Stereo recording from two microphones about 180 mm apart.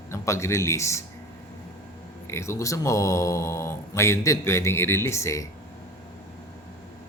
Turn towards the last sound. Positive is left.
turn(degrees=15)  # may be behind; listen again after turning